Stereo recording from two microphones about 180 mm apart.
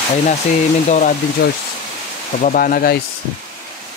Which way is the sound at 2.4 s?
50° left (ahead or behind).